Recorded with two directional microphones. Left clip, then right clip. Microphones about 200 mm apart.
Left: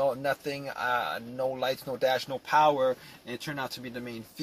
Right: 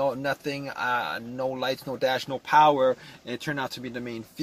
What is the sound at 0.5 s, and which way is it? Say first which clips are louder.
Speech: right 2 dB; 10° right (ahead or behind).